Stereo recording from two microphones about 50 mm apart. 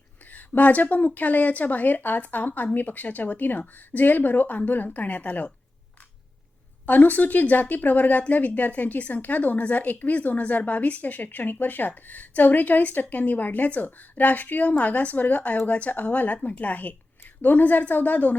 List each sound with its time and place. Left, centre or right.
0.3 s a woman's voice: left
6.8 s a woman's voice: left